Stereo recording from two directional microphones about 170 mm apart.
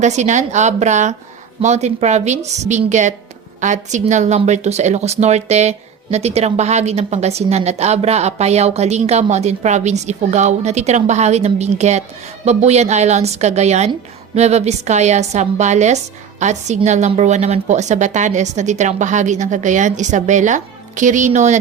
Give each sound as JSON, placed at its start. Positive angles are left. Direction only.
{"t": 0.0, "sound": "a woman's voice", "side_deg": -45}